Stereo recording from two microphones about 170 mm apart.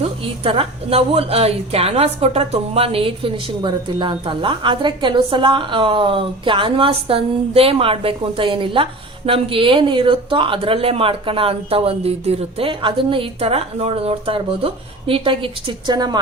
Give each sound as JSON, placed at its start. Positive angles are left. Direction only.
{"t": 0.4, "sound": "a woman's voice", "side_deg": -35}